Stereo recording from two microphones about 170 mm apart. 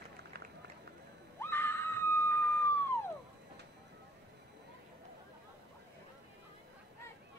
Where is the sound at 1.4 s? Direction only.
15° left (ahead or behind).